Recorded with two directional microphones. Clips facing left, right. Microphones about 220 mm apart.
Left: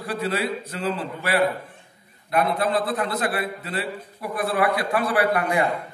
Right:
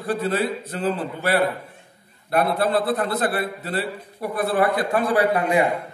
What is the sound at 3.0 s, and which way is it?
A man's voice, 35° right (ahead or behind).